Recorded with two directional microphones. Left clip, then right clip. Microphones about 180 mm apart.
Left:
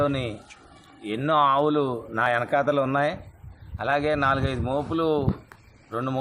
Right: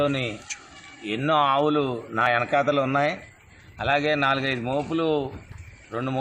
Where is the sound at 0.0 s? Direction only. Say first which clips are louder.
Right 1 dB; centre (ahead or behind).